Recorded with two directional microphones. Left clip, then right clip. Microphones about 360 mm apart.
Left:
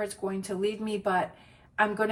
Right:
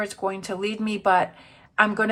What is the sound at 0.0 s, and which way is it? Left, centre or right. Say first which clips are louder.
A woman's voice: right 5 dB; centre.